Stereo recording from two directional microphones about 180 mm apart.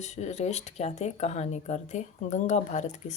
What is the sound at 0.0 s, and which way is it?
A woman's voice, 40° left (ahead or behind).